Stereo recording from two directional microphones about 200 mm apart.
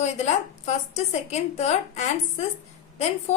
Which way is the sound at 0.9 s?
35° left (ahead or behind).